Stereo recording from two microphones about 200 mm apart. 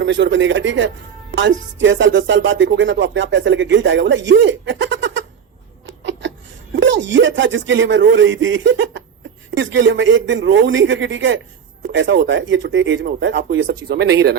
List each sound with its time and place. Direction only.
0.0 s speech: 65° right (ahead or behind)
1.3 s music: 70° right (ahead or behind)
5.8 s a sound: 65° right (ahead or behind)
6.7 s music: 65° right (ahead or behind)
13.1 s speech: 60° right (ahead or behind)